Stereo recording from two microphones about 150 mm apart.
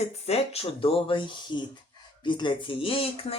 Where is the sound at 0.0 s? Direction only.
45° left (ahead or behind).